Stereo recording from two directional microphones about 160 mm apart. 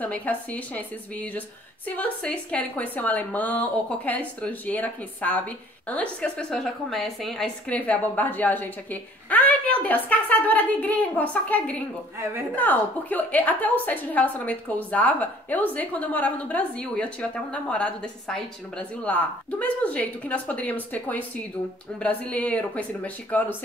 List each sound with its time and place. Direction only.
0.0 s a woman's voice: 10° left (ahead or behind)
12.2 s speech: 15° right (ahead or behind)
12.5 s a woman's voice: 10° left (ahead or behind)